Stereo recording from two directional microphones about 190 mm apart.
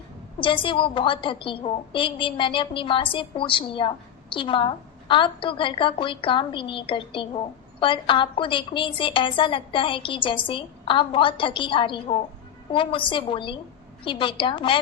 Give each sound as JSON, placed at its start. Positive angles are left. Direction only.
{"t": 0.3, "sound": "a woman's voice", "side_deg": 25}